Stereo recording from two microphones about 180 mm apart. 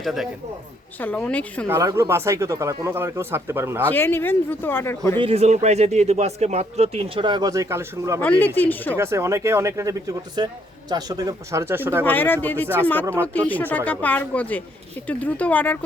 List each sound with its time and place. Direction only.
0.0 s a man's voice: centre (ahead or behind)
1.6 s speech: 15° right (ahead or behind)
3.8 s speech: 10° left (ahead or behind)
5.2 s speech: 35° right (ahead or behind); by 8.2 s 15° right (ahead or behind)
8.2 s speech: 10° left (ahead or behind)
9.0 s speech: 15° right (ahead or behind)
12.0 s speech: 10° left (ahead or behind)